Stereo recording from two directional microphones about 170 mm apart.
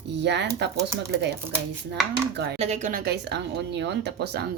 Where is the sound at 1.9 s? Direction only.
80° right.